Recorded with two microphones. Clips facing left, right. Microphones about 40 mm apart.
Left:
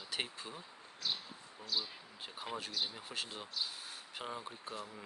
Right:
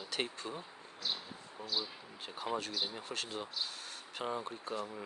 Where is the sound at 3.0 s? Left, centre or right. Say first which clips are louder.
Right 3 dB; centre.